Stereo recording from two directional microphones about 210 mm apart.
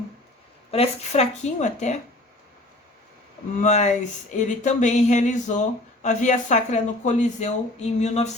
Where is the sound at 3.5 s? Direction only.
35° left (ahead or behind).